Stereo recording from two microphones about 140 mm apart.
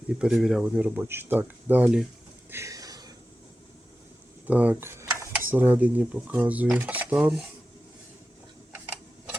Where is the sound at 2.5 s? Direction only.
20° right (ahead or behind).